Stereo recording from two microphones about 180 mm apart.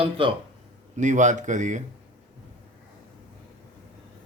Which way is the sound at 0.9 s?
40° right (ahead or behind).